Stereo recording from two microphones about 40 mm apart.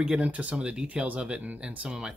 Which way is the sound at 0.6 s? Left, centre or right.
Right.